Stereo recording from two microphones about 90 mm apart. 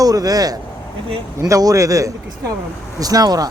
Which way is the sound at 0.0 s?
45° right (ahead or behind).